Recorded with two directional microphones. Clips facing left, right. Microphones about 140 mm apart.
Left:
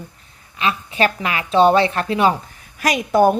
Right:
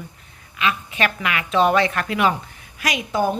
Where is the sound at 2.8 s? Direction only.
45° left (ahead or behind).